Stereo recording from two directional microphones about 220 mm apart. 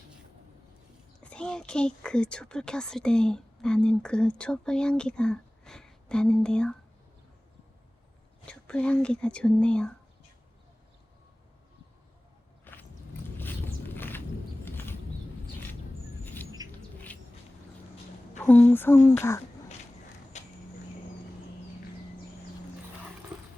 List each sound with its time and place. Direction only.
1.2 s speech: 5° left (ahead or behind)
8.4 s speech: 5° left (ahead or behind)
12.7 s a sound: 10° left (ahead or behind)
16.2 s chirp: 10° left (ahead or behind)
18.3 s a sound: 10° left (ahead or behind)
20.3 s vehicle: 30° left (ahead or behind)